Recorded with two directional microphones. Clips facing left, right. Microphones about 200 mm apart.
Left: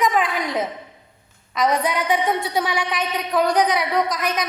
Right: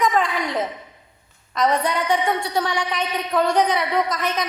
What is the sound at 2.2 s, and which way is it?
A woman's voice, 15° left (ahead or behind).